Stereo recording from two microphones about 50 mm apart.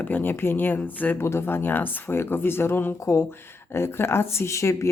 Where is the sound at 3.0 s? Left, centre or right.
Left.